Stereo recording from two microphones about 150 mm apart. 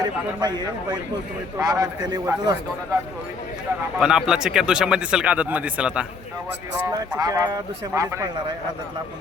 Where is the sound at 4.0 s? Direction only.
5° right (ahead or behind).